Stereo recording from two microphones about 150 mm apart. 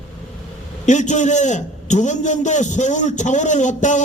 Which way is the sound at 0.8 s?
55° left (ahead or behind).